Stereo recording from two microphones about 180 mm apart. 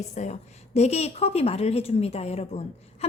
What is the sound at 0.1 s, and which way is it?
A woman's voice, 40° left (ahead or behind).